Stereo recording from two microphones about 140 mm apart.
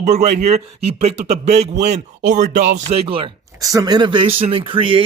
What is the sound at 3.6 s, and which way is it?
Speech, 25° right (ahead or behind).